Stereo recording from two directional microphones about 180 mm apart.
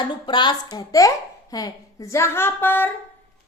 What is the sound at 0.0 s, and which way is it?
A woman's voice, 25° left (ahead or behind).